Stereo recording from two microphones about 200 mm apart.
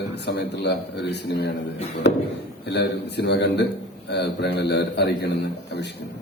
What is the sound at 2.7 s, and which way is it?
A man's voice, 55° left (ahead or behind).